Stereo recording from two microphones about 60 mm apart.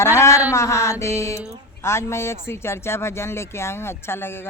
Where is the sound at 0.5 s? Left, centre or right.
Left.